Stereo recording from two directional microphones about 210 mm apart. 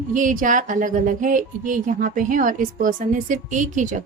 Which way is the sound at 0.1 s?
40° right (ahead or behind).